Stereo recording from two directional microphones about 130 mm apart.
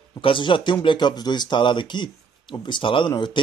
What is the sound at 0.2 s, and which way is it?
Speech, 40° left (ahead or behind).